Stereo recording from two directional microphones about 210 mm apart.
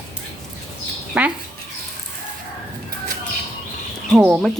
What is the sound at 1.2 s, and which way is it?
Speech, 5° right (ahead or behind).